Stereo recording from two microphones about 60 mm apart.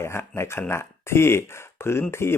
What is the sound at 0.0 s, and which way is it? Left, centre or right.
Speech, left.